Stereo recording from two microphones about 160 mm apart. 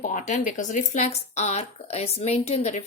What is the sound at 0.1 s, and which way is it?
A woman's voice, 50° left (ahead or behind).